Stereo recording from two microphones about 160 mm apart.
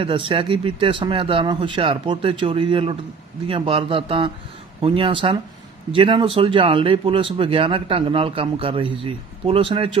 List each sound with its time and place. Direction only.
0.0 s speech: 30° right (ahead or behind)